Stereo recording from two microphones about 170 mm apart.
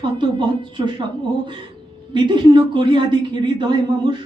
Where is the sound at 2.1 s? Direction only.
25° right (ahead or behind).